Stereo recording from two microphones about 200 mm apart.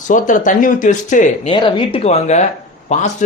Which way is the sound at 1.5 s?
25° left (ahead or behind).